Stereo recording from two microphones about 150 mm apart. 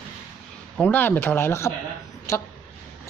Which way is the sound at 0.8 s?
10° left (ahead or behind).